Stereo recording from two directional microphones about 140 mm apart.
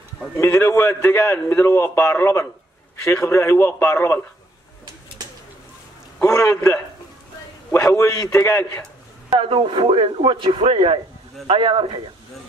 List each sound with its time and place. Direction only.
0.4 s a man's voice: 20° left (ahead or behind)
6.2 s a man's voice: 20° left (ahead or behind)
9.3 s a man's voice: 40° right (ahead or behind)